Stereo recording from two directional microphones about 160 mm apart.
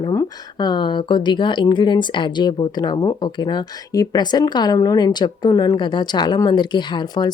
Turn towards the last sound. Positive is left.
turn(degrees=25)  # may be behind; listen again after turning